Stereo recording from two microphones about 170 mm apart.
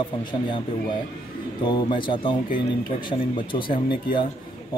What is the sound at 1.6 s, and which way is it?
Speech, 30° left (ahead or behind).